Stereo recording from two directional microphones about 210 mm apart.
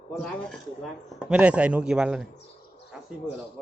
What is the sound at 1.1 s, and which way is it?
Speech, 5° right (ahead or behind).